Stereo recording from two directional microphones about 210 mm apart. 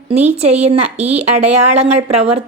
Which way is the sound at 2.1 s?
25° right (ahead or behind).